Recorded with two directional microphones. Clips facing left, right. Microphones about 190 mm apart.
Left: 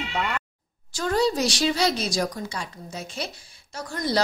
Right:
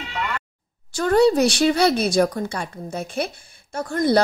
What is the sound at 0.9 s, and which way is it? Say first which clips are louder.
A woman's voice: right 7 dB; 60° right (ahead or behind).